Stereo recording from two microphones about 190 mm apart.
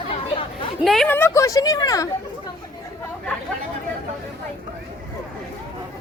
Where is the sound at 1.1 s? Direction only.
15° left (ahead or behind).